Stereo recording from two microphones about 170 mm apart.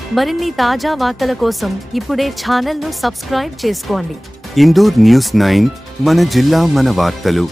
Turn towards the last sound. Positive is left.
turn(degrees=0)  # may be behind; listen again after turning